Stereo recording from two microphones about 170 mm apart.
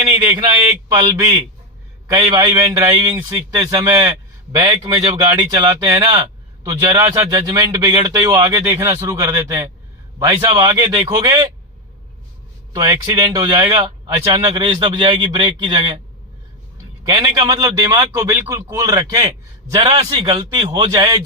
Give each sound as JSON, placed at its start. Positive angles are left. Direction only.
{"t": 0.0, "sound": "speech", "side_deg": -25}
{"t": 12.7, "sound": "speech", "side_deg": -25}
{"t": 17.0, "sound": "speech", "side_deg": -25}